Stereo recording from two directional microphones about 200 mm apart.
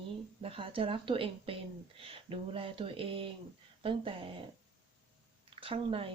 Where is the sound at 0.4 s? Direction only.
30° right (ahead or behind).